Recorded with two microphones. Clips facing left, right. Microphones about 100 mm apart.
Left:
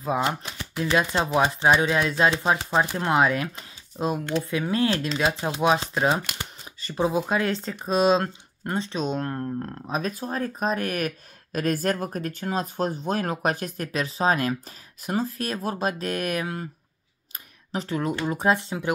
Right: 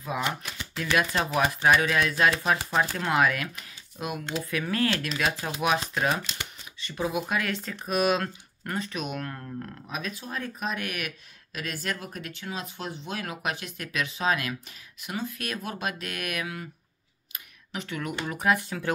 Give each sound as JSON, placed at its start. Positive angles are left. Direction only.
{"t": 0.0, "sound": "speech", "side_deg": 35}
{"t": 6.3, "sound": "speech", "side_deg": 35}
{"t": 17.7, "sound": "speech", "side_deg": 30}